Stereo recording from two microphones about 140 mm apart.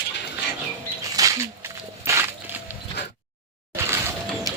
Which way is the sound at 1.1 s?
20° right (ahead or behind).